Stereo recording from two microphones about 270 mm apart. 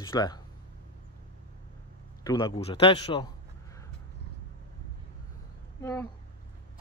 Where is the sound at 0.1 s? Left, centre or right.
Centre.